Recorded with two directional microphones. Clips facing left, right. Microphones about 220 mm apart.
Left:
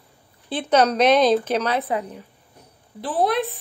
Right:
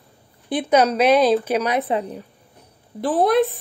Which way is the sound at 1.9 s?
30° right (ahead or behind).